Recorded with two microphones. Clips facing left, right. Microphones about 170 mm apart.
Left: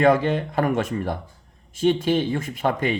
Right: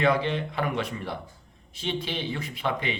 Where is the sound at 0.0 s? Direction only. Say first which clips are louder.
Left 6 dB; 45° left (ahead or behind).